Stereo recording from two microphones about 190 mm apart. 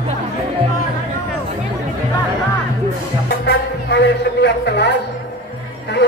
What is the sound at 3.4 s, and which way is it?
A man's voice, 60° left (ahead or behind).